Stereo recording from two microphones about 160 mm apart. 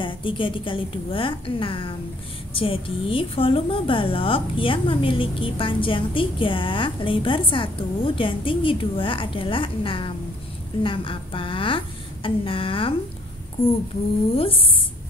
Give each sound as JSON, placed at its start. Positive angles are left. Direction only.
{"t": 0.0, "sound": "a woman's voice", "side_deg": 30}
{"t": 14.3, "sound": "a woman's voice", "side_deg": 35}